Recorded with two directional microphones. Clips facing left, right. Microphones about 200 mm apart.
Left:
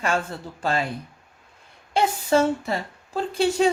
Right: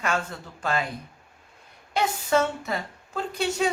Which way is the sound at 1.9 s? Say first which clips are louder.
Left 3 dB; 30° left (ahead or behind).